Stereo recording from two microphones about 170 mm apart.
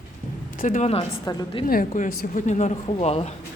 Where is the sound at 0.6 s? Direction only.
50° left (ahead or behind).